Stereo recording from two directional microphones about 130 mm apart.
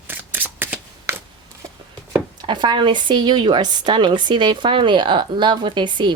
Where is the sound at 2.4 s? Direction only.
35° right (ahead or behind).